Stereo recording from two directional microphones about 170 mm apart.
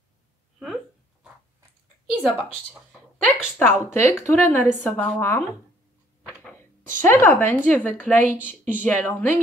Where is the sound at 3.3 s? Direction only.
10° left (ahead or behind).